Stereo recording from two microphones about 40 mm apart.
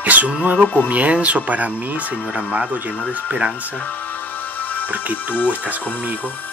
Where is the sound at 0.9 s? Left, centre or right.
Right.